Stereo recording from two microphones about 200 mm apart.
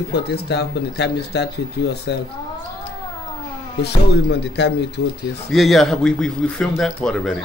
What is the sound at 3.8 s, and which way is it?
Speech, 60° left (ahead or behind).